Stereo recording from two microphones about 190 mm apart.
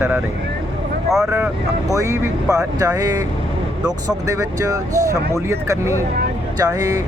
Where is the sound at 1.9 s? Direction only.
15° right (ahead or behind).